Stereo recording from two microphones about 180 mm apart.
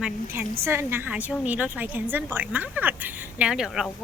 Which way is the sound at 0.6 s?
15° right (ahead or behind).